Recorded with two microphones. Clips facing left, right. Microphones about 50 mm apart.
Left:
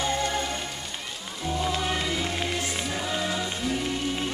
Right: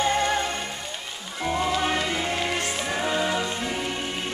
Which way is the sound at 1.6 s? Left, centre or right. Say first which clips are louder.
Right 3 dB; right.